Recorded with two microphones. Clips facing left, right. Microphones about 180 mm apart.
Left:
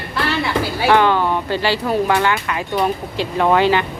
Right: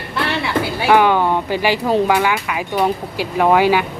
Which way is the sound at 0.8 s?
15° right (ahead or behind).